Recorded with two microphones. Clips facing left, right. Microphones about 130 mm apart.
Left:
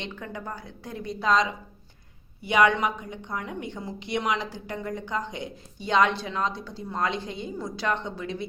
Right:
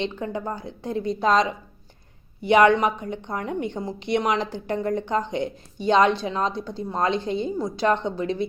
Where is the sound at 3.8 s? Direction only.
30° right (ahead or behind).